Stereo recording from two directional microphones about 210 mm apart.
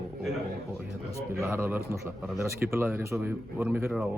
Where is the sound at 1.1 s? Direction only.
10° right (ahead or behind).